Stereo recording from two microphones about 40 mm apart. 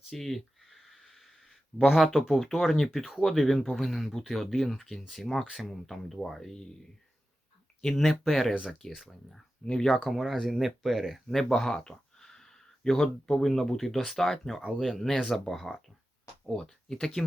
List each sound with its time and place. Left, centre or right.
0.1 s speech: centre
0.7 s a sound: centre
1.8 s speech: centre
7.9 s speech: centre
9.0 s speech: centre
10.0 s speech: centre
11.3 s speech: centre
15.1 s speech: left
15.4 s speech: centre